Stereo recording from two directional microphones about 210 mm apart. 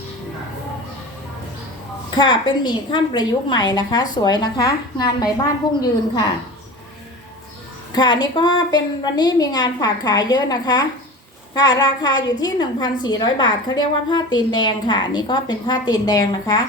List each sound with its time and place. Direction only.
2.0 s a woman's voice: 20° left (ahead or behind)
7.9 s a woman's voice: 20° left (ahead or behind)